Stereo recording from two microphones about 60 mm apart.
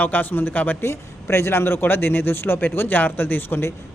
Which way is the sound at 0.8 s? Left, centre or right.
Left.